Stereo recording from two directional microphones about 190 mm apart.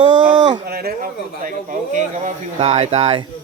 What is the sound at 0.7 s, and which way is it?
Speech, 55° right (ahead or behind).